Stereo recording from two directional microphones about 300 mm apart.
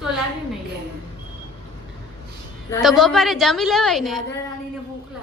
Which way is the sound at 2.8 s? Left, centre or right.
Centre.